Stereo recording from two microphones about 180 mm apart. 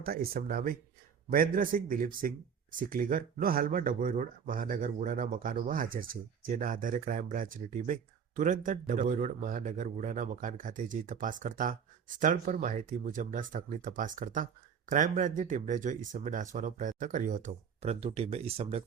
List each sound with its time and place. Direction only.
0.0 s a man's voice: 55° right (ahead or behind); by 18.8 s 35° right (ahead or behind)